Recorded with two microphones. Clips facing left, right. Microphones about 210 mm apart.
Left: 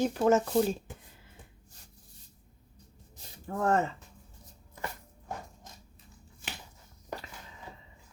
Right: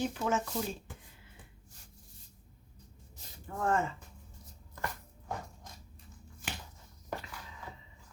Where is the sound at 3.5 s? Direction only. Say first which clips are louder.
Left 4 dB; 40° left (ahead or behind).